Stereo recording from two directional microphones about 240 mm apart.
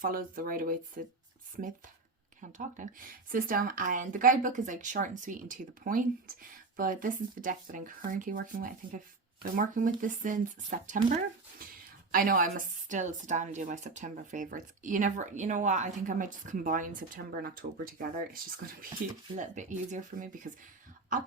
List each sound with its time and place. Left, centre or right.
0.0 s speech: right
2.5 s speech: right
11.6 s a sound: right
12.1 s speech: right